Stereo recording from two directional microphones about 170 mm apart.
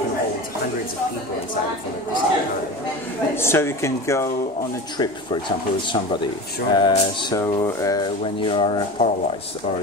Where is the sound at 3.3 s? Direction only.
15° left (ahead or behind).